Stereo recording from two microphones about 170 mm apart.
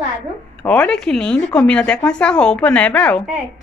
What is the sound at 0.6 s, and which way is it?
Speech, 5° left (ahead or behind).